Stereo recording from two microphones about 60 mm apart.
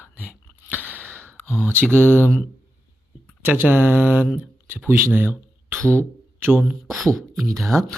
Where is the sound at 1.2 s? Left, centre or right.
Left.